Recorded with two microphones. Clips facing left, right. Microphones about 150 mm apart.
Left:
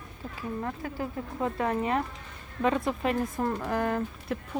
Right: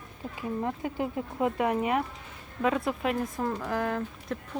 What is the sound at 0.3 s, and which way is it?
Speech, 20° right (ahead or behind).